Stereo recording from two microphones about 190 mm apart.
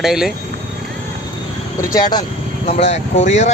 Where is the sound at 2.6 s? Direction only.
35° left (ahead or behind).